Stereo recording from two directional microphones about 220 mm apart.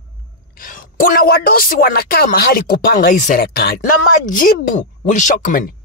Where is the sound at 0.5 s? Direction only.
40° left (ahead or behind).